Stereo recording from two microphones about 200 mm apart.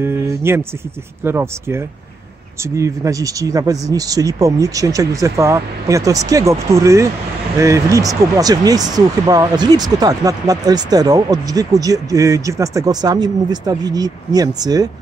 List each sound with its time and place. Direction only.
0.0 s speech: 10° right (ahead or behind)